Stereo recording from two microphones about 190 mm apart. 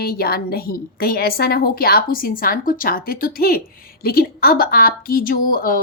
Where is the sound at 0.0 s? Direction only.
55° left (ahead or behind).